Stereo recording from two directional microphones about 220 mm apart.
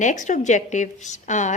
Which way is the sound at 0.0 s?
35° left (ahead or behind).